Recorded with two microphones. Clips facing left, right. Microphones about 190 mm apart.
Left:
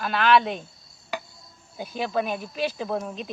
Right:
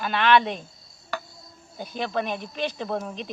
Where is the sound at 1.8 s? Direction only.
5° left (ahead or behind).